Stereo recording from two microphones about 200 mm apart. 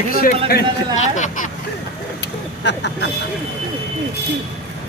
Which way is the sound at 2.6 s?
60° left (ahead or behind).